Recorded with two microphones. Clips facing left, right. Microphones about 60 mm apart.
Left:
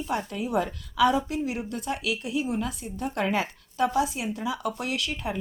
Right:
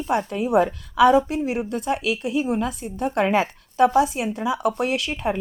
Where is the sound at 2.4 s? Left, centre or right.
Right.